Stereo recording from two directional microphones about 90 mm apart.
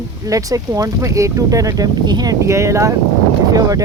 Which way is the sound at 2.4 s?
35° right (ahead or behind).